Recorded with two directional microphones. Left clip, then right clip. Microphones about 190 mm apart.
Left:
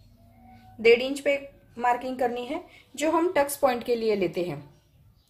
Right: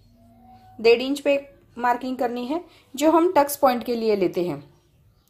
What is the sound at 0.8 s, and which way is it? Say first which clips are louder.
A woman's voice: right 2 dB; 25° right (ahead or behind).